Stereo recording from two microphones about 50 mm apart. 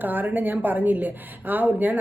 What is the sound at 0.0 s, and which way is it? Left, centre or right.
Speech, right.